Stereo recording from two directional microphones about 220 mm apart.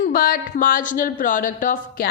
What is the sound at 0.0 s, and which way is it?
A woman's voice, 40° left (ahead or behind).